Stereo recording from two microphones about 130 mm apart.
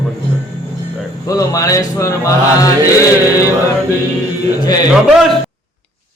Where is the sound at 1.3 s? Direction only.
25° left (ahead or behind).